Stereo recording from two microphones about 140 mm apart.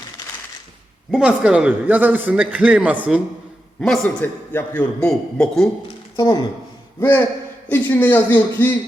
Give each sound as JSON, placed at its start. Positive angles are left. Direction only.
{"t": 1.1, "sound": "a man's voice", "side_deg": -5}
{"t": 3.8, "sound": "a man's voice", "side_deg": 5}
{"t": 4.0, "sound": "a man's voice", "side_deg": 15}
{"t": 6.1, "sound": "speech", "side_deg": 30}
{"t": 7.0, "sound": "a man's voice", "side_deg": 15}